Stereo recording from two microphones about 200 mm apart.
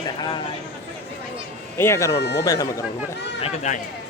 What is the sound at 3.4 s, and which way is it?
Speech, 35° left (ahead or behind).